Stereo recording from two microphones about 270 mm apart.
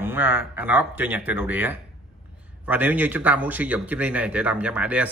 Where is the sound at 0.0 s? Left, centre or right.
Centre.